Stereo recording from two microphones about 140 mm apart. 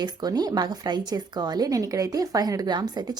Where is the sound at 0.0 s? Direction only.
30° right (ahead or behind).